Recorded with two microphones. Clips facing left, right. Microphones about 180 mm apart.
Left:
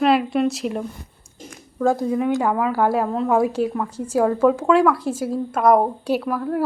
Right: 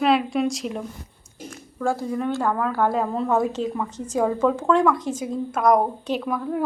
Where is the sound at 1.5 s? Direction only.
15° left (ahead or behind).